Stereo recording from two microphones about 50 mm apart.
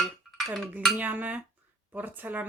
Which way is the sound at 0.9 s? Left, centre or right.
Right.